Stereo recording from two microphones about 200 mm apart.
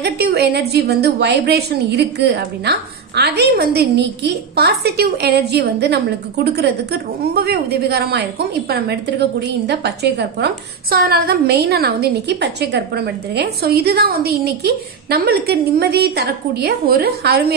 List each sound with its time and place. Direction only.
0.0 s a woman's voice: 55° right (ahead or behind)